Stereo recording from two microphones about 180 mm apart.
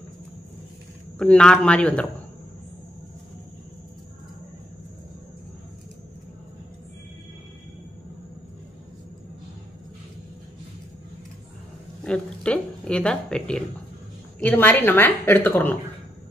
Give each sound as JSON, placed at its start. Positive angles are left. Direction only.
{"t": 1.1, "sound": "speech", "side_deg": 5}
{"t": 12.0, "sound": "a sound", "side_deg": 5}
{"t": 14.4, "sound": "a woman's voice", "side_deg": 10}